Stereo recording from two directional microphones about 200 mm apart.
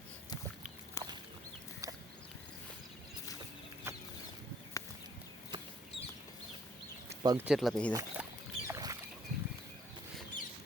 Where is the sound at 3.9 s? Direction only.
10° right (ahead or behind).